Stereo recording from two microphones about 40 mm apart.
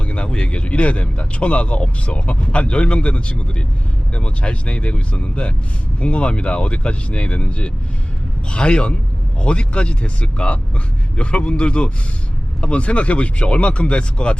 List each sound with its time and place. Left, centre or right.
0.0 s speech: left